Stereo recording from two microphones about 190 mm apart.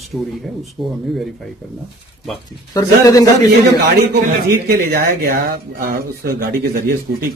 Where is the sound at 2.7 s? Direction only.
20° left (ahead or behind).